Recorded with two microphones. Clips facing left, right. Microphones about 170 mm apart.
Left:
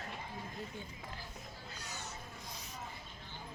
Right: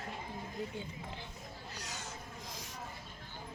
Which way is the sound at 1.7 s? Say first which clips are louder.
Even; 85° right.